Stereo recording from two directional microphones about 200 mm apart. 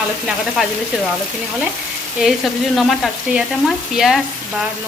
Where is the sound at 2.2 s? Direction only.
Centre (ahead or behind).